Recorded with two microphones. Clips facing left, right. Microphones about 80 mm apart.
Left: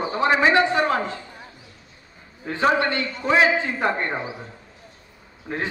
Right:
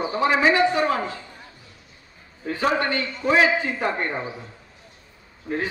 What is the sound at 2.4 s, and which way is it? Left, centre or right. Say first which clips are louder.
A man's voice: left 2 dB; left.